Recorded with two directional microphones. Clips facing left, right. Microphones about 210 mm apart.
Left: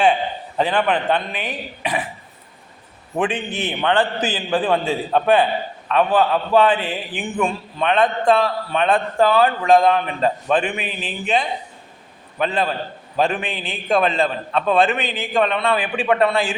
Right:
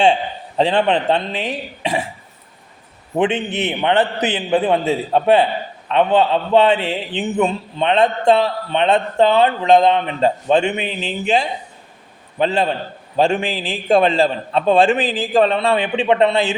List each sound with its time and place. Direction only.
0.0 s a man's voice: 25° right (ahead or behind)
3.2 s a man's voice: 25° right (ahead or behind)